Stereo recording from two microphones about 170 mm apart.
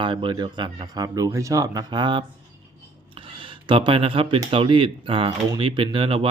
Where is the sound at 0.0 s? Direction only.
30° right (ahead or behind).